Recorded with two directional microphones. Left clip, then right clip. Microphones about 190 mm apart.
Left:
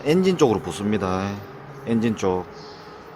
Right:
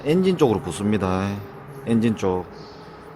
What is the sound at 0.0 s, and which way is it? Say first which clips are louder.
A man's voice: left 1 dB; 5° left (ahead or behind).